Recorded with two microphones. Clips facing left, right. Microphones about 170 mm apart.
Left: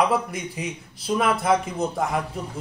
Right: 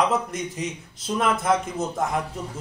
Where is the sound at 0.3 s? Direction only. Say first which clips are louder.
Right 1 dB; 5° left (ahead or behind).